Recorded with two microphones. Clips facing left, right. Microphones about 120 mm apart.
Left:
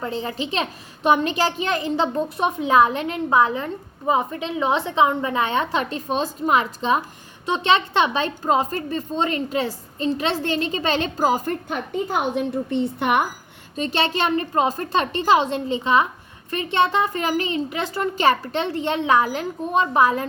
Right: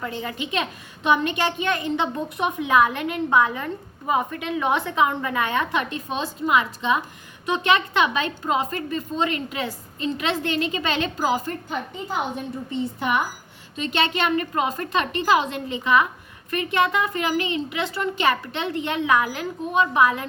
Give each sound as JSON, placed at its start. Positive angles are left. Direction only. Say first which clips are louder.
{"t": 0.0, "sound": "a woman's voice", "louder": "left 3 dB", "side_deg": 30}
{"t": 12.7, "sound": "a woman's voice", "louder": "left 3 dB", "side_deg": 60}
{"t": 13.7, "sound": "a woman's voice", "louder": "left 1 dB", "side_deg": 35}